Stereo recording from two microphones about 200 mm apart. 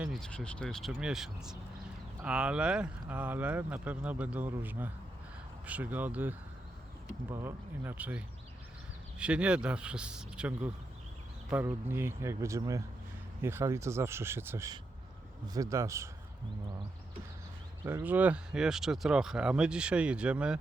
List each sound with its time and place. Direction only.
0.0 s speech: centre (ahead or behind); by 16.0 s 15° right (ahead or behind)
17.8 s speech: 10° right (ahead or behind)